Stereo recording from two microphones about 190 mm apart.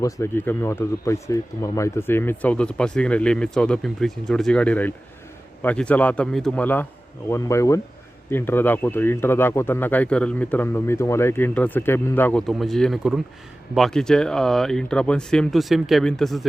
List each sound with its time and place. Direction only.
0.0 s speech: 15° left (ahead or behind)